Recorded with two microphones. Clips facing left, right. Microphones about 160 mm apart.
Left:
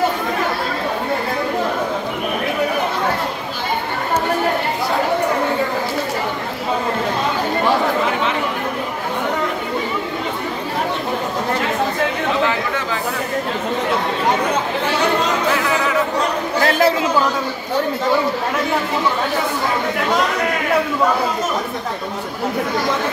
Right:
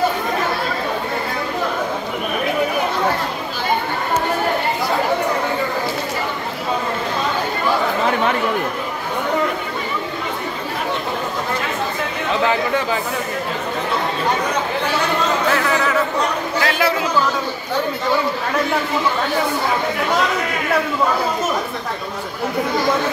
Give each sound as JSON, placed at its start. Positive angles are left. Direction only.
{"t": 16.6, "sound": "chatter", "side_deg": 40}